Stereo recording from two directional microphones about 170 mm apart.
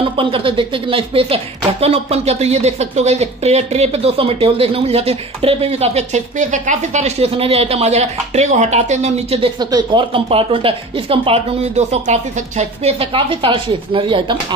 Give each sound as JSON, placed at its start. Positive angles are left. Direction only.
{"t": 0.0, "sound": "speech", "side_deg": -30}
{"t": 9.6, "sound": "speech", "side_deg": -25}